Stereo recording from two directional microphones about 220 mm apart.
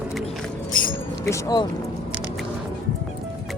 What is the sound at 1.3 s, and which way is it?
Speech, 15° left (ahead or behind).